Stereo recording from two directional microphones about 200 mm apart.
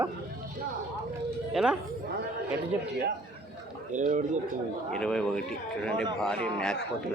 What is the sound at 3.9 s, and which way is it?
Speech, 40° right (ahead or behind).